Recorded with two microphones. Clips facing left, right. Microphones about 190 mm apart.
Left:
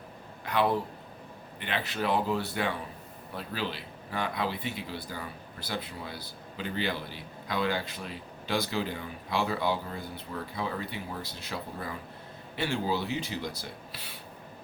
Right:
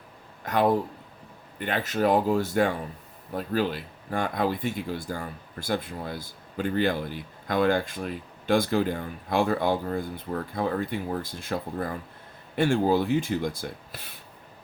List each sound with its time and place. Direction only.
0.4 s speech: 45° right (ahead or behind)